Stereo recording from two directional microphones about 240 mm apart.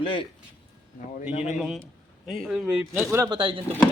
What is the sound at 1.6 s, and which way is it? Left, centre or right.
Speech, centre.